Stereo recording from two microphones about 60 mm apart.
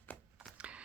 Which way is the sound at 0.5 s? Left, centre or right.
Centre.